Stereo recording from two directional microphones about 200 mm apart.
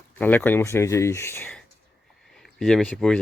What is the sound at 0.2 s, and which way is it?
Speech, 10° left (ahead or behind).